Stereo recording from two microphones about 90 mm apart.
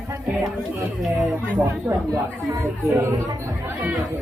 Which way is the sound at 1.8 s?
35° right (ahead or behind).